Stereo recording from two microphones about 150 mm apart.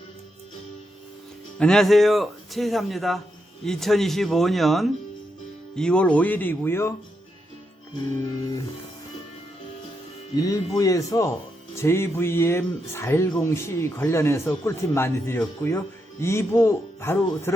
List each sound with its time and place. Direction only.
1.5 s speech: 5° left (ahead or behind)
10.3 s speech: 25° left (ahead or behind)